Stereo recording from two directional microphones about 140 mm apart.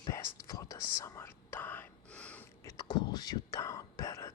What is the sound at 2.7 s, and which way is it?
Whispering, 30° left (ahead or behind).